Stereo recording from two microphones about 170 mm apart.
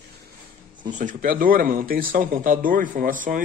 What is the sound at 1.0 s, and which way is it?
Speech, 50° right (ahead or behind).